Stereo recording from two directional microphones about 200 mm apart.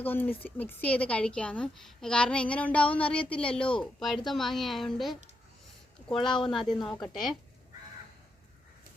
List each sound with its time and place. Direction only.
0.0 s a woman's voice: 10° left (ahead or behind)
6.4 s a woman's voice: centre (ahead or behind)
6.7 s a woman's voice: 20° left (ahead or behind)